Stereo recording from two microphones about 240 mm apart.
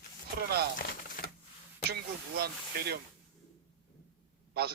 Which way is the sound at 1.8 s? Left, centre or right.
Right.